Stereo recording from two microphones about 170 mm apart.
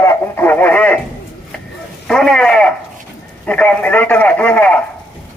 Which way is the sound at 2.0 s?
5° left (ahead or behind).